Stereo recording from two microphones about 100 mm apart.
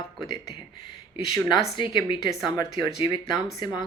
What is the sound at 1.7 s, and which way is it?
A woman's voice, 50° left (ahead or behind).